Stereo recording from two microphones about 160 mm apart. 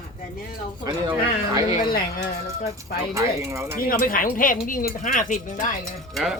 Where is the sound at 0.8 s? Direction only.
25° right (ahead or behind).